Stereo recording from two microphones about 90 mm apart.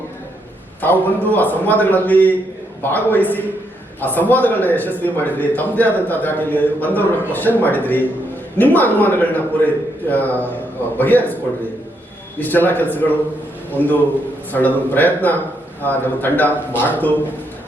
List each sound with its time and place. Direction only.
0.8 s a man's voice: 20° left (ahead or behind)
12.4 s a man's voice: 20° left (ahead or behind)